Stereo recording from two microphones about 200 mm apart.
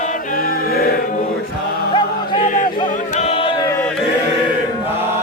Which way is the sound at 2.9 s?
35° left (ahead or behind).